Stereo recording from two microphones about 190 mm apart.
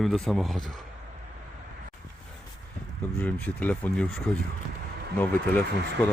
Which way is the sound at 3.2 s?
5° left (ahead or behind).